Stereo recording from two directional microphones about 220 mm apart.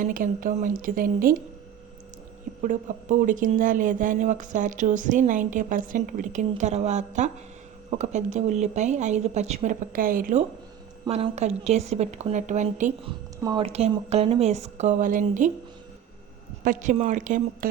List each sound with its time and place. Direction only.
0.0 s speech: 40° right (ahead or behind)
2.6 s speech: 35° right (ahead or behind)
11.0 s speech: 25° right (ahead or behind)
13.1 s speech: 20° right (ahead or behind); by 15.5 s 35° right (ahead or behind)
16.6 s speech: 35° right (ahead or behind)